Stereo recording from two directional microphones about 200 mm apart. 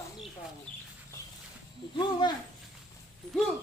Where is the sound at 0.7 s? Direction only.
25° right (ahead or behind).